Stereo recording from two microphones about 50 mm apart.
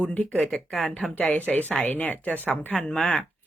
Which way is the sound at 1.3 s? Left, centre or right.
Left.